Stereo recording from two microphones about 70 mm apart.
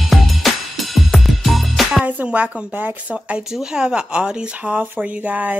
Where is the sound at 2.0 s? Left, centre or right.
Right.